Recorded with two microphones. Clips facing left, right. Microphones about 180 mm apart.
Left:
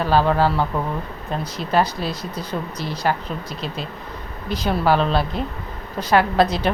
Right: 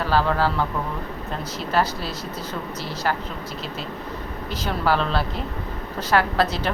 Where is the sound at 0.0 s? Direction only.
20° left (ahead or behind).